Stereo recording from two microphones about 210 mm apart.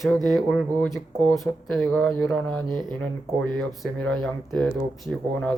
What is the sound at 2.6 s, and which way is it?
Speech, 20° right (ahead or behind).